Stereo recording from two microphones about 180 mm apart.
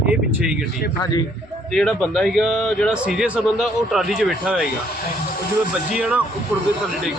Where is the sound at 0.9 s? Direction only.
20° left (ahead or behind).